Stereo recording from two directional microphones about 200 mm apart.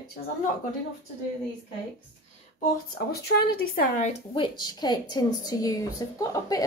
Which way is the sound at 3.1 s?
55° left (ahead or behind).